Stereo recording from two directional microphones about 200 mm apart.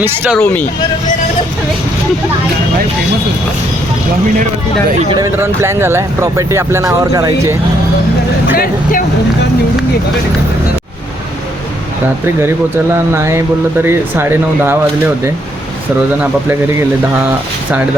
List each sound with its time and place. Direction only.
0.0 s speech: 10° right (ahead or behind)
0.3 s speech: 10° left (ahead or behind)
5.0 s speech: 20° right (ahead or behind)
8.5 s speech: 45° left (ahead or behind)
12.4 s speech: 10° right (ahead or behind)